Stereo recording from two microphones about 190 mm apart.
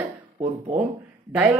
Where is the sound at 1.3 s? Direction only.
5° right (ahead or behind).